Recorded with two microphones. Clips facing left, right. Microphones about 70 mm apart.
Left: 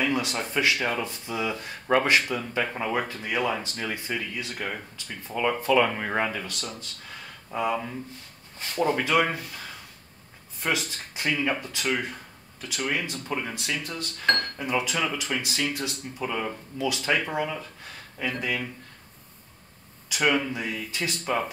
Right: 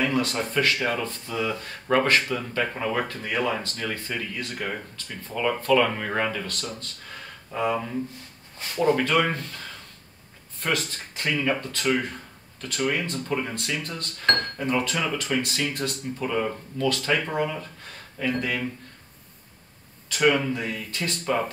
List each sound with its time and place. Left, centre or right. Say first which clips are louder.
0.1 s speech: right 2 dB; centre
0.7 s speech: right 1 dB; centre
1.0 s speech: right 2 dB; centre
4.1 s speech: even; centre
20.1 s speech: right 3 dB; centre